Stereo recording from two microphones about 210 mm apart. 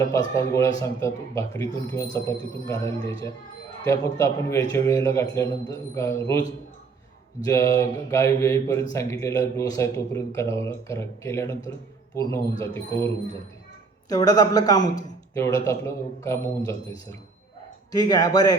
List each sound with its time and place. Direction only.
0.0 s speech: 20° left (ahead or behind)
7.4 s speech: 15° left (ahead or behind)
14.1 s speech: 20° left (ahead or behind)
17.9 s speech: 20° left (ahead or behind)